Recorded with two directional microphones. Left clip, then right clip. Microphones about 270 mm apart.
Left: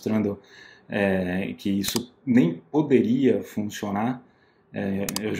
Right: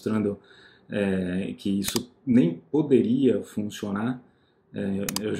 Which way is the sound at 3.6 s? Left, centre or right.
Centre.